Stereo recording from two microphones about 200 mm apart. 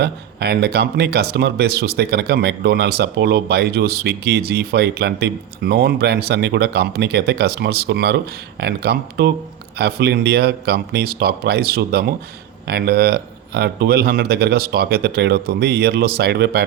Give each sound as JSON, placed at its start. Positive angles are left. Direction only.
{"t": 0.0, "sound": "speech", "side_deg": -55}